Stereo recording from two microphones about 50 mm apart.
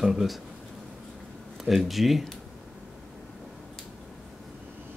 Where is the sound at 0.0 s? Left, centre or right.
Centre.